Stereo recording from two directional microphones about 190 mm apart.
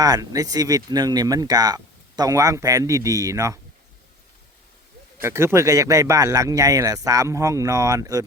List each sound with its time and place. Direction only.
0.0 s speech: 20° right (ahead or behind)
5.2 s speech: 15° right (ahead or behind)